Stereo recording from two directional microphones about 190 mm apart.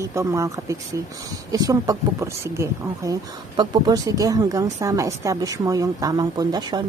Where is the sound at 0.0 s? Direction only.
15° right (ahead or behind).